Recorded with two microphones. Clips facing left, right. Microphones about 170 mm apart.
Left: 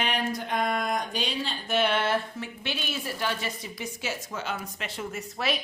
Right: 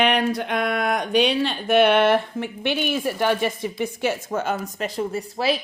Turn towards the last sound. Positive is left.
turn(degrees=-30)  # may be behind; listen again after turning